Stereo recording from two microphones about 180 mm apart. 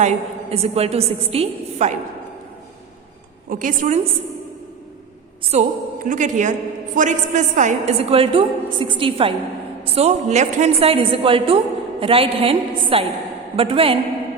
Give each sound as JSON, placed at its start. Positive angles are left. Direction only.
{"t": 0.0, "sound": "a woman's voice", "side_deg": -35}
{"t": 3.5, "sound": "a woman's voice", "side_deg": -50}
{"t": 5.5, "sound": "a woman's voice", "side_deg": -40}